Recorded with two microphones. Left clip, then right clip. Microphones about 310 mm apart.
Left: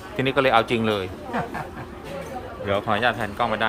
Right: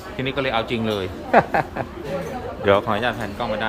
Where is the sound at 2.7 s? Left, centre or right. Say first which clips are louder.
Right 3 dB; centre.